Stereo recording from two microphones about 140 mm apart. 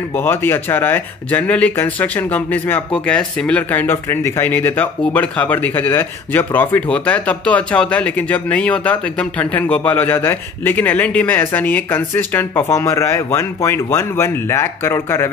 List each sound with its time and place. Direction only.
0.1 s speech: 15° left (ahead or behind)